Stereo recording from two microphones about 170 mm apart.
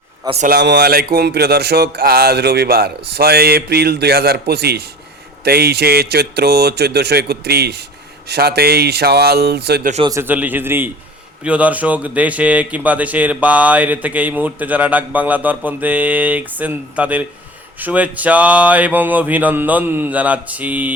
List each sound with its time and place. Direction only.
0.4 s speech: 75° right (ahead or behind)
10.0 s speech: 15° right (ahead or behind)